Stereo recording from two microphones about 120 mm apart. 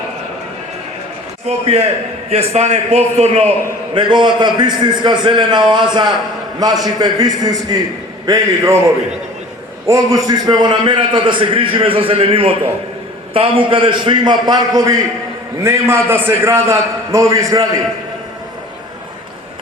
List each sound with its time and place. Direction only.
1.5 s a man's voice: 60° right (ahead or behind)
3.9 s a man's voice: 40° right (ahead or behind)
9.8 s a man's voice: 25° right (ahead or behind)